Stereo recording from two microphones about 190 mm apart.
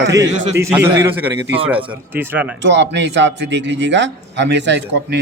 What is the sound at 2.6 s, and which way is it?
A man's voice, 65° right (ahead or behind).